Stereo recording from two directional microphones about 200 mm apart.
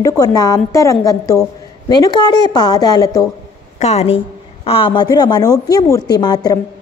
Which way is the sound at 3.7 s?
30° left (ahead or behind).